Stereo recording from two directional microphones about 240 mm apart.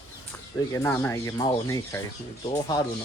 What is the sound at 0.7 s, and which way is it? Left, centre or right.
Speech, centre.